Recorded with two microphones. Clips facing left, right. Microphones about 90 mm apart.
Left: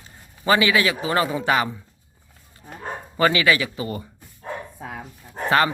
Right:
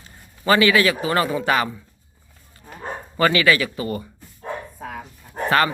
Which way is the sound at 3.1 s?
20° left (ahead or behind).